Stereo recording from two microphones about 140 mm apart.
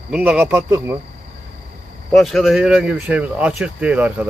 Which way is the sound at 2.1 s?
Centre (ahead or behind).